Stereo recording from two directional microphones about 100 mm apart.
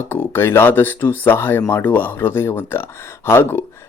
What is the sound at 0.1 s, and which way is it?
A man's voice, 25° left (ahead or behind).